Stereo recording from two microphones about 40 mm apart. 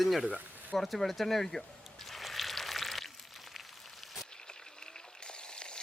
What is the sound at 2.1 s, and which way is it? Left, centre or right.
Pour, centre.